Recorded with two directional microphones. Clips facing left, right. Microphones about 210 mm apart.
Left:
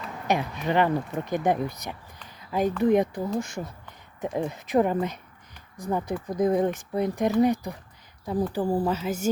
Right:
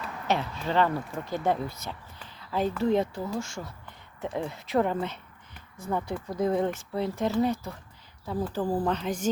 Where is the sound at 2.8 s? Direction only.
15° left (ahead or behind).